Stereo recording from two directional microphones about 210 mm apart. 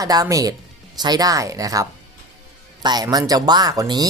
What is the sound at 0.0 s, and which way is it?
Speech, 15° right (ahead or behind).